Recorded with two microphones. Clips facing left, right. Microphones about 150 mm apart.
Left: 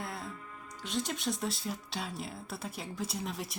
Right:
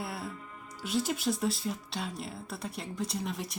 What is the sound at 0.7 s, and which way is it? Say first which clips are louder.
Speech: right 4 dB; 5° right (ahead or behind).